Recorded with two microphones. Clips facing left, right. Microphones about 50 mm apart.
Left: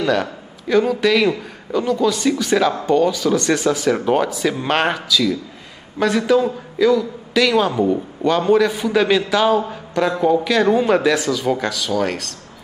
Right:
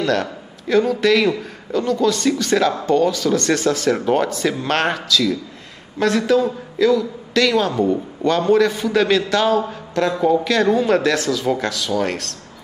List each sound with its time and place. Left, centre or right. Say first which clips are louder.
0.0 s a man's voice: left 1 dB; centre